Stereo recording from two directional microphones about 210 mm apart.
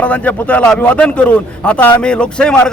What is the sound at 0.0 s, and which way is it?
A man's voice, 5° left (ahead or behind).